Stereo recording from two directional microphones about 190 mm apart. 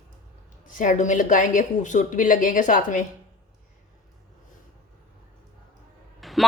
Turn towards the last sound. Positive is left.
turn(degrees=0)  # may be behind; listen again after turning